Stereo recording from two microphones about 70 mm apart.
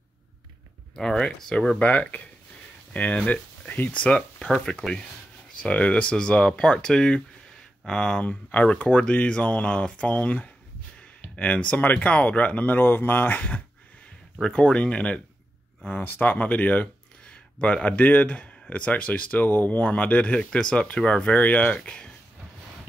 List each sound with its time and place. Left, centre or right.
0.9 s speech: centre
8.2 s speech: left
14.4 s speech: centre
15.9 s speech: left